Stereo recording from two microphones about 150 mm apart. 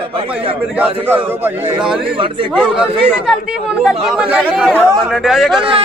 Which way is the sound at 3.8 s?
5° right (ahead or behind).